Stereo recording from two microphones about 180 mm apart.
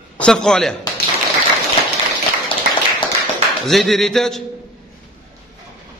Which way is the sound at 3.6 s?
Centre (ahead or behind).